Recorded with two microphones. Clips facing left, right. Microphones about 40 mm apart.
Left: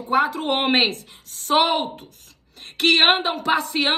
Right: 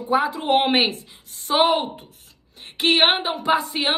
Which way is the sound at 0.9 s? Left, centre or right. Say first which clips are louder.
Left 1 dB; left.